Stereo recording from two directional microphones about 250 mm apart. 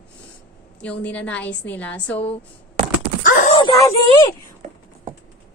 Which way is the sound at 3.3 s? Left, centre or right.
Left.